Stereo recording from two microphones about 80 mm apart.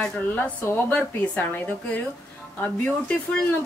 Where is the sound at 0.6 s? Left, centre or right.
Left.